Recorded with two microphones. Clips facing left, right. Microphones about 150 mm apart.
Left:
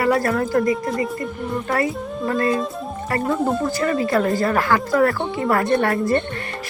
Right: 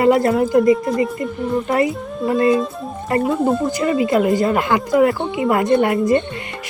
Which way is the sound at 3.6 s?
20° right (ahead or behind).